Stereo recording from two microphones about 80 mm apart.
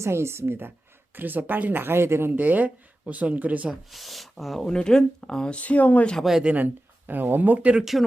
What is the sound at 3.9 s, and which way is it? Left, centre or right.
Speech, centre.